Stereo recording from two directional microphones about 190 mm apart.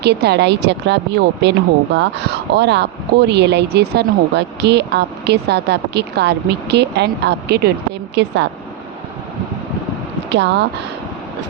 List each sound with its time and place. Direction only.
0.0 s a woman's voice: 60° right (ahead or behind)
10.2 s speech: 65° right (ahead or behind)